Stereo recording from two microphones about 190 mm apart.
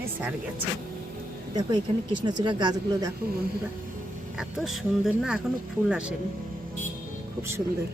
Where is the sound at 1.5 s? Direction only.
20° right (ahead or behind).